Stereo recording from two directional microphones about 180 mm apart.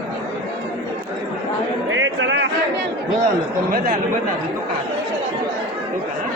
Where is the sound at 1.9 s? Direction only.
90° right.